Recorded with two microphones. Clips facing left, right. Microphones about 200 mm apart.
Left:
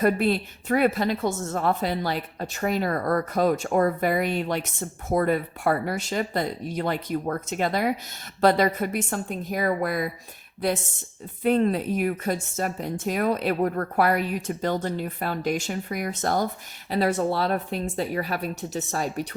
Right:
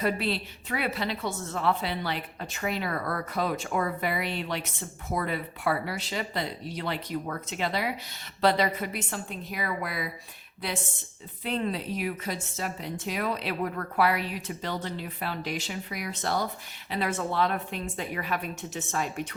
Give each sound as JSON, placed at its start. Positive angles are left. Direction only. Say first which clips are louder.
{"t": 0.0, "sound": "a woman's voice", "louder": "left 7 dB", "side_deg": 50}
{"t": 11.4, "sound": "a woman's voice", "louder": "left 9 dB", "side_deg": 50}